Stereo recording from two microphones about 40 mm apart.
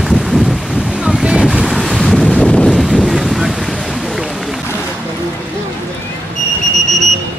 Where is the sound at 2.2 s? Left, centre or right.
Left.